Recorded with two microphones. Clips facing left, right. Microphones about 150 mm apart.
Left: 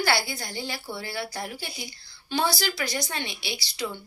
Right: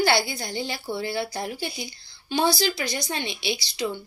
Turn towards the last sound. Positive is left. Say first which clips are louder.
# right 6 dB
turn(degrees=-20)  # may be behind; listen again after turning